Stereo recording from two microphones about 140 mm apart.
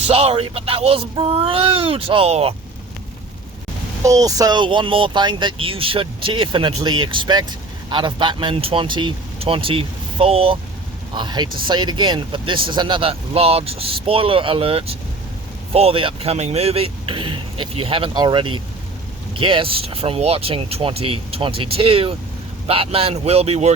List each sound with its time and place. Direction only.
0.1 s speech: 45° right (ahead or behind)
4.0 s speech: 25° right (ahead or behind); by 10.6 s 40° right (ahead or behind)
11.1 s speech: 30° right (ahead or behind); by 23.7 s 50° right (ahead or behind)